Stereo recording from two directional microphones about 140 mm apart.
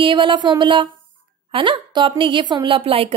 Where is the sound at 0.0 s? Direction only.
35° right (ahead or behind).